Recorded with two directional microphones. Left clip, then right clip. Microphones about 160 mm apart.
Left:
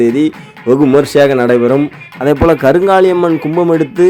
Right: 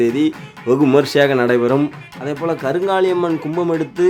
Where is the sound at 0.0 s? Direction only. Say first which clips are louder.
Left 5 dB; 25° left (ahead or behind).